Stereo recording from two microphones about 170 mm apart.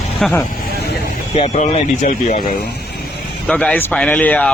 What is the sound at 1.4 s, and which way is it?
Speech, 35° left (ahead or behind).